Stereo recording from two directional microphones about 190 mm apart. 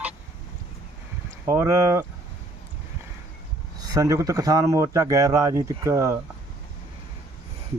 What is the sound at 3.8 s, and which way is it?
Speech, 15° right (ahead or behind).